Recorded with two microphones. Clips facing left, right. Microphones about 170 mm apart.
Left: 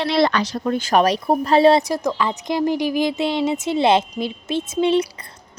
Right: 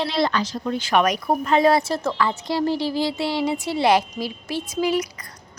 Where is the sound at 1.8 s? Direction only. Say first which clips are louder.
Left 1 dB; 15° left (ahead or behind).